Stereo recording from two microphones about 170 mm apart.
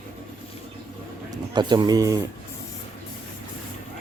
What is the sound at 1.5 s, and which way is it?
Speech, 25° right (ahead or behind).